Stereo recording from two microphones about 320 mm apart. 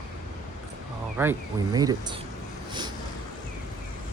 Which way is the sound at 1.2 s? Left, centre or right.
Centre.